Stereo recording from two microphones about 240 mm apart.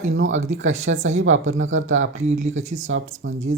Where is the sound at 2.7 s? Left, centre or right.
Right.